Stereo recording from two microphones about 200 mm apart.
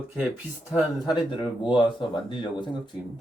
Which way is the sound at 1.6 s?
25° left (ahead or behind).